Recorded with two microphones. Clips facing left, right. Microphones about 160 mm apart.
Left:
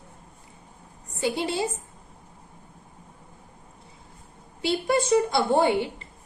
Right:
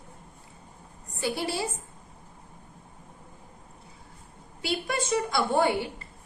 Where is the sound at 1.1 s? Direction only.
20° left (ahead or behind).